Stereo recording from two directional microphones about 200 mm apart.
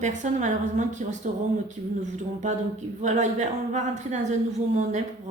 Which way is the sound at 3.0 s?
35° right (ahead or behind).